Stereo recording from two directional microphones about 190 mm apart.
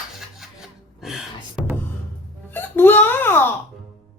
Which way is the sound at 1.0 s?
Centre (ahead or behind).